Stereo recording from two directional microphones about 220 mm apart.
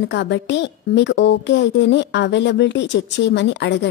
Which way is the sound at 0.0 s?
50° left (ahead or behind).